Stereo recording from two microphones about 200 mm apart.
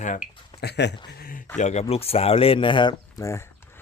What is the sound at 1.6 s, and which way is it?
Speech, 35° left (ahead or behind).